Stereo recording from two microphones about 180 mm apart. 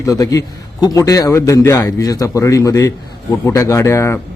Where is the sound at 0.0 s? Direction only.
20° left (ahead or behind).